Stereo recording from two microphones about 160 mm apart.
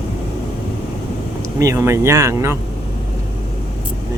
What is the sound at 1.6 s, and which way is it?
Speech, 20° right (ahead or behind).